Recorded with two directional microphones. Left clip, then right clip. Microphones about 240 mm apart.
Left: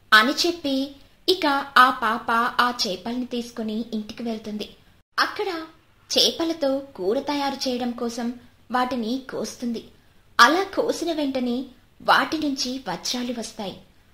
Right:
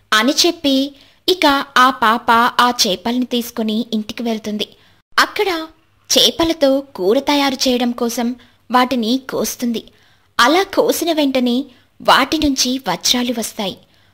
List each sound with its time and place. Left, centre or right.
0.1 s speech: right